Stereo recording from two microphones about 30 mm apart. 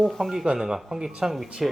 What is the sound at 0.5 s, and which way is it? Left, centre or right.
Speech, right.